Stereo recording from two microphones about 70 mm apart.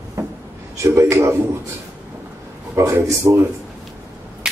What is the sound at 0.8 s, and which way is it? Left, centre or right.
Speech, right.